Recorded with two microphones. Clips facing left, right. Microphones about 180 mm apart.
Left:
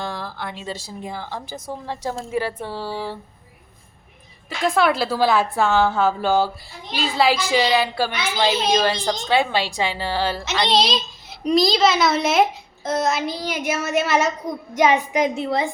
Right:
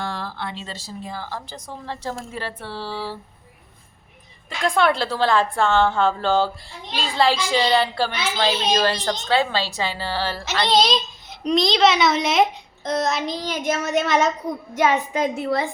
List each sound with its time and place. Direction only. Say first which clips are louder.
0.0 s a woman's voice: even; 15° left (ahead or behind)
4.4 s a woman's voice: left 1 dB; 5° left (ahead or behind)
10.7 s a child's voice: right 3 dB; centre (ahead or behind); by 15.7 s 20° left (ahead or behind)